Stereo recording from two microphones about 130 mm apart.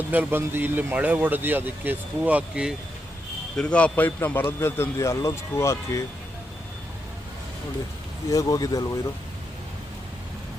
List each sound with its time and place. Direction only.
0.1 s speech: 15° right (ahead or behind)
3.6 s a man's voice: 10° left (ahead or behind)
8.3 s speech: 25° left (ahead or behind)